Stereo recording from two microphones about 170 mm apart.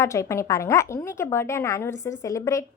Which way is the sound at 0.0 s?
15° left (ahead or behind).